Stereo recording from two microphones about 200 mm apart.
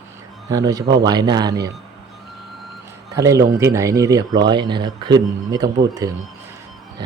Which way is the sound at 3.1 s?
15° right (ahead or behind).